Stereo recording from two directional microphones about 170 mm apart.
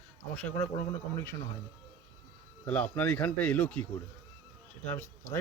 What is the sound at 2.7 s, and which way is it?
A man's voice, 10° left (ahead or behind).